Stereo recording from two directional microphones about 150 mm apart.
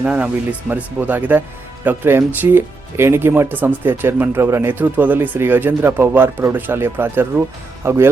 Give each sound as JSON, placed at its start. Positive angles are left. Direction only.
{"t": 0.0, "sound": "speech", "side_deg": -10}